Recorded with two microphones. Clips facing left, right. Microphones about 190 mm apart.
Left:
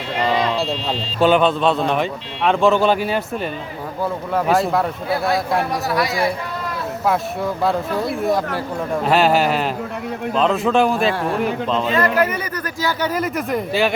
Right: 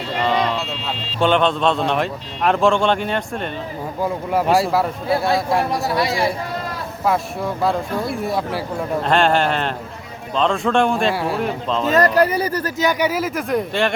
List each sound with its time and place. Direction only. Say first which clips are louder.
0.5 s music: left 4 dB; 35° left (ahead or behind)
1.2 s a man's voice: left 2 dB; 5° left (ahead or behind)
4.0 s a man's voice: right 1 dB; 10° right (ahead or behind)
5.7 s speech: even; 25° right (ahead or behind)
7.0 s a man's voice: even; centre (ahead or behind)
11.1 s a man's voice: left 1 dB; 10° right (ahead or behind)
11.9 s speech: right 5 dB; 40° right (ahead or behind)
12.8 s a man's voice: right 1 dB; 15° right (ahead or behind); by 13.9 s centre (ahead or behind)